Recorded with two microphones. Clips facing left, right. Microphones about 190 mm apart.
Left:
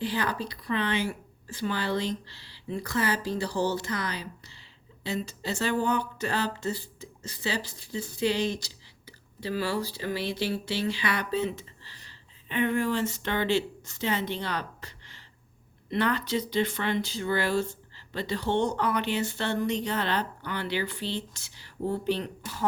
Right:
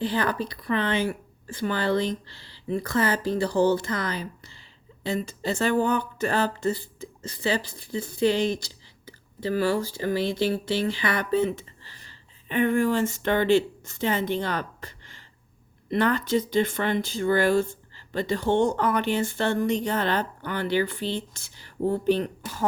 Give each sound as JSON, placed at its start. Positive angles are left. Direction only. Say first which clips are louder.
{"t": 0.0, "sound": "speech", "louder": "right 4 dB", "side_deg": -50}